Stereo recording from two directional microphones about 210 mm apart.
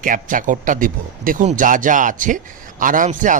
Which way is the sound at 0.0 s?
40° right (ahead or behind).